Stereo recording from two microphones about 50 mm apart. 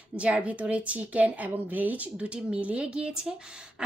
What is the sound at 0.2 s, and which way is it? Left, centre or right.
A woman's voice, right.